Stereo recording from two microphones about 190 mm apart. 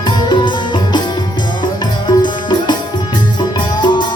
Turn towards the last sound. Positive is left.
turn(degrees=25)  # may be behind; listen again after turning